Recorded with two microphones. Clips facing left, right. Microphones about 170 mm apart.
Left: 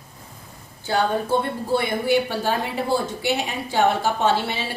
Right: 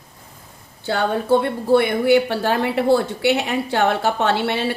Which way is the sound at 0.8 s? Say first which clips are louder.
Right 1 dB; 65° right (ahead or behind).